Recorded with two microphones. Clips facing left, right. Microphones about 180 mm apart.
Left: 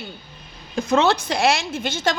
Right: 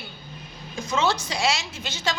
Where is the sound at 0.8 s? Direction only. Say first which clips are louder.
Left 6 dB; 60° left (ahead or behind).